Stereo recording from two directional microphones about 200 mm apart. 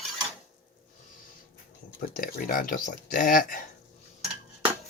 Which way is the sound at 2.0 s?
45° left (ahead or behind).